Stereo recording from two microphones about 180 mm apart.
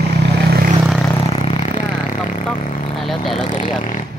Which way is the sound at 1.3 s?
35° left (ahead or behind).